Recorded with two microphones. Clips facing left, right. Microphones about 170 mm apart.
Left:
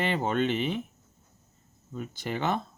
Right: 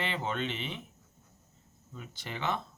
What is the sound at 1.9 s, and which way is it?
Speech, 45° left (ahead or behind).